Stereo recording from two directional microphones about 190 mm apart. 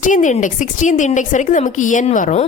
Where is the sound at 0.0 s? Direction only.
40° left (ahead or behind).